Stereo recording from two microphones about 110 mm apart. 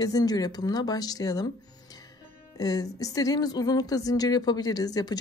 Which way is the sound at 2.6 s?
35° left (ahead or behind).